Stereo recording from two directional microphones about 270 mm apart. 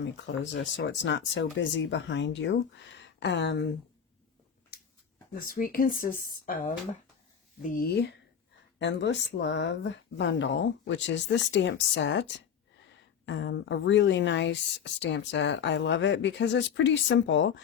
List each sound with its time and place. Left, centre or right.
0.0 s speech: left
4.7 s a sound: left
5.3 s speech: left
7.6 s speech: left